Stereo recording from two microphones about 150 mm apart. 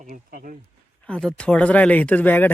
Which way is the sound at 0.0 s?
70° right (ahead or behind).